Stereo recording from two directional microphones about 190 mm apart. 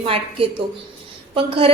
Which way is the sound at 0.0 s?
30° right (ahead or behind).